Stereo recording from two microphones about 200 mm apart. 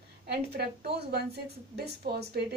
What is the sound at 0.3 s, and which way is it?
A woman's voice, 55° right (ahead or behind).